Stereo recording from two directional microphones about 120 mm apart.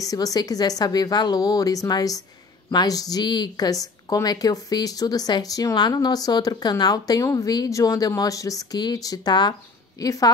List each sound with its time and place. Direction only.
0.0 s a woman's voice: 30° left (ahead or behind)